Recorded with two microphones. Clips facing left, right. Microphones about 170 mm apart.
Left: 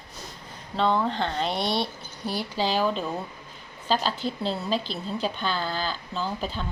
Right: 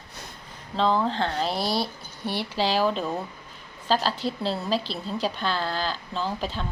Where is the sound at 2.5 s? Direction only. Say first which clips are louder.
Right 1 dB; 30° right (ahead or behind).